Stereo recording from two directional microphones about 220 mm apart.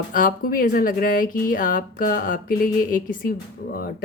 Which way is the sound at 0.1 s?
40° left (ahead or behind).